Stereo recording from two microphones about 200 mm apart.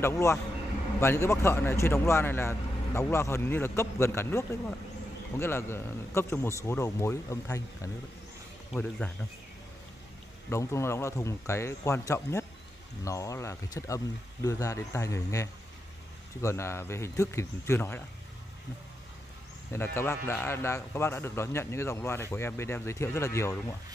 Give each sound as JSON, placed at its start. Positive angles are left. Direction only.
{"t": 0.0, "sound": "speech", "side_deg": 15}
{"t": 10.5, "sound": "speech", "side_deg": 15}
{"t": 19.7, "sound": "speech", "side_deg": 10}